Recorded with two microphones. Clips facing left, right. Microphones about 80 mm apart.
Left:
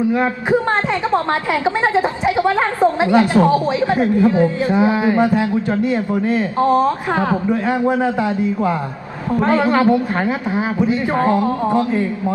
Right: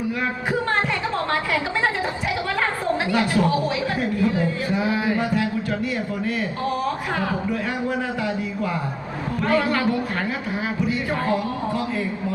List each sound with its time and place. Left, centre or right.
1.8 s a woman's voice: left
7.7 s a woman's voice: left